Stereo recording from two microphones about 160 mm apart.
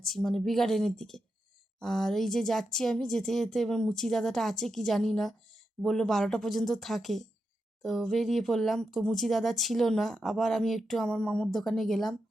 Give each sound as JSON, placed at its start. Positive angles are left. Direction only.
{"t": 0.0, "sound": "speech", "side_deg": 0}